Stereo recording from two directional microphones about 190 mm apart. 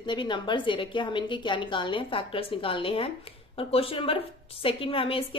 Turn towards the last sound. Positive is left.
turn(degrees=30)  # may be behind; listen again after turning